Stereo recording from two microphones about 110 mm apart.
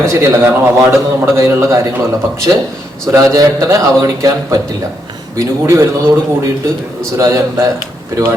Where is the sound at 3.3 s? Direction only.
30° right (ahead or behind).